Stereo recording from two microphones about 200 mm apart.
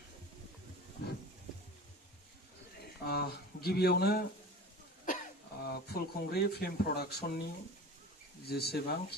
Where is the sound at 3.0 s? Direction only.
50° left (ahead or behind).